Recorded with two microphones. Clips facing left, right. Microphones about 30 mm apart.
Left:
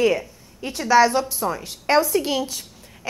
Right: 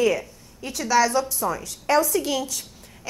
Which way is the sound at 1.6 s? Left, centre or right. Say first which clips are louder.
Left 2 dB; left.